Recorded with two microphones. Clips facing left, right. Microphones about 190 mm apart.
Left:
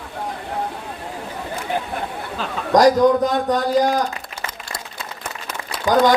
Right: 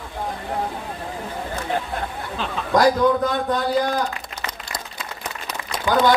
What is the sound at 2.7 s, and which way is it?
A man's voice, 40° left (ahead or behind).